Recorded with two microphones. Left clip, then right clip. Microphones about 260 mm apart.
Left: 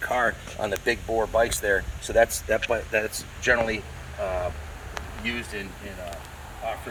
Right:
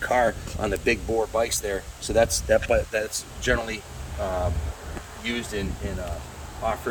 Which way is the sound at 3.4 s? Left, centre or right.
Centre.